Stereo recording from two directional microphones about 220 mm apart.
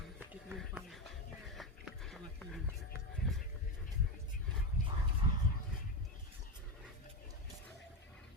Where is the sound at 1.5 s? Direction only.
Centre (ahead or behind).